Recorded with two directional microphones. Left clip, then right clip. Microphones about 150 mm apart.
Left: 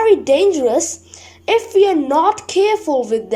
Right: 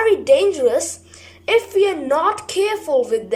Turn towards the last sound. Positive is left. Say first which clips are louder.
# left 1 dB
turn(degrees=20)  # may be behind; listen again after turning